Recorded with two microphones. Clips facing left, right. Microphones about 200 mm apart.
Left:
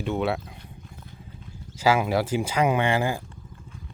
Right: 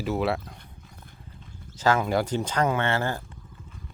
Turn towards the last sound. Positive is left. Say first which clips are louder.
# left 3 dB
turn(degrees=10)  # may be behind; listen again after turning